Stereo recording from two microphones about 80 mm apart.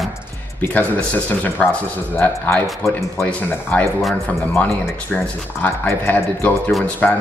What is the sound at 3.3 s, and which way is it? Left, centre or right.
Speech, centre.